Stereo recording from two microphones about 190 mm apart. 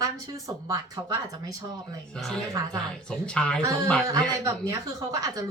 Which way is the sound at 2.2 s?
Centre (ahead or behind).